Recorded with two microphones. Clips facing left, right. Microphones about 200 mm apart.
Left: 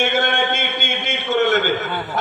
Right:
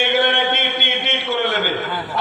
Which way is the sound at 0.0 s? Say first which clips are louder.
Right 1 dB; 45° left (ahead or behind).